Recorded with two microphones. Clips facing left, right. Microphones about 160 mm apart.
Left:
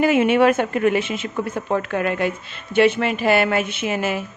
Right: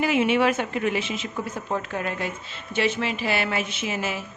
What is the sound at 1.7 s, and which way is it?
A woman's voice, 70° left (ahead or behind).